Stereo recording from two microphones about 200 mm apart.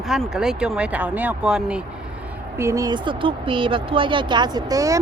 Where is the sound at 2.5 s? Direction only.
15° right (ahead or behind).